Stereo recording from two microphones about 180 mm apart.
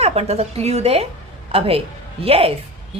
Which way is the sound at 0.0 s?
35° right (ahead or behind).